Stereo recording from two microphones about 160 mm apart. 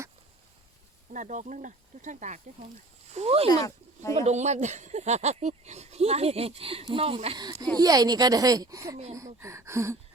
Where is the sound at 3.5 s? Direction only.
25° left (ahead or behind).